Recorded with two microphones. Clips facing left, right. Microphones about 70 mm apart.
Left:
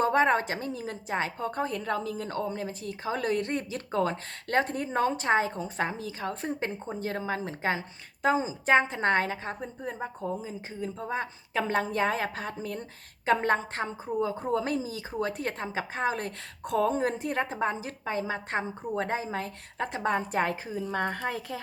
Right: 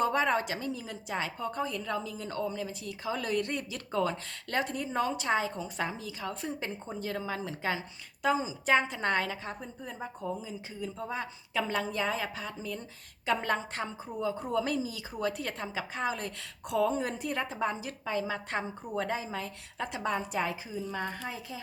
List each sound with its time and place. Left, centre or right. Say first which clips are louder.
0.0 s a woman's voice: left 4 dB; left